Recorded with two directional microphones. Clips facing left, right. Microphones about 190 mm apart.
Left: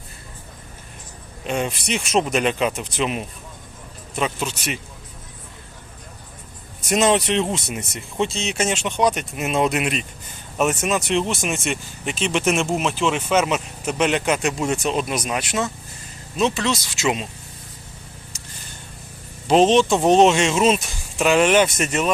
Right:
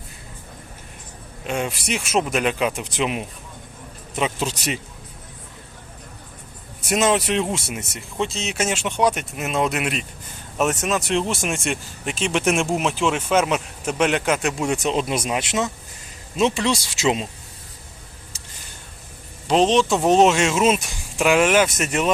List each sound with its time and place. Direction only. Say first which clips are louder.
1.5 s speech: left 1 dB; 5° right (ahead or behind)
4.4 s speech: right 2 dB; 35° right (ahead or behind)
6.8 s speech: left 1 dB; 5° right (ahead or behind); by 17.2 s 30° right (ahead or behind)
19.5 s speech: left 2 dB; 5° left (ahead or behind)